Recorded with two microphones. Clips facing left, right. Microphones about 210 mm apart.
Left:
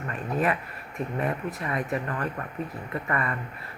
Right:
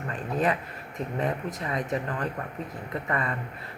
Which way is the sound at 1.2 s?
20° right (ahead or behind).